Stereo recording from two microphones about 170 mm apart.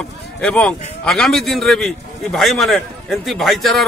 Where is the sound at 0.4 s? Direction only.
5° left (ahead or behind).